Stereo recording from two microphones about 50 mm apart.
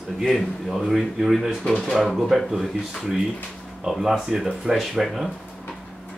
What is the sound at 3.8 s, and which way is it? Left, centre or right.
Speech, centre.